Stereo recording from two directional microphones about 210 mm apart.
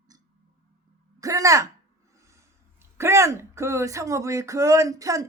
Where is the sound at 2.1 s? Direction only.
15° right (ahead or behind).